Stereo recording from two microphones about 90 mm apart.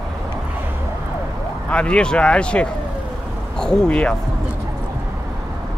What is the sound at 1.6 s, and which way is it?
Speech, 10° left (ahead or behind).